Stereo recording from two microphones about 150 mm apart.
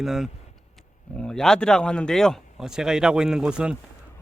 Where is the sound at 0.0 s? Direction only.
Centre (ahead or behind).